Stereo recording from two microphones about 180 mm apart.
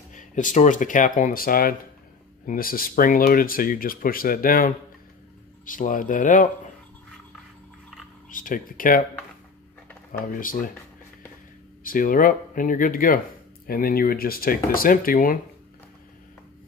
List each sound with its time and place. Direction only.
0.1 s speech: 45° left (ahead or behind)
8.3 s speech: 50° left (ahead or behind)
10.3 s speech: 50° left (ahead or behind)
11.8 s speech: 50° left (ahead or behind)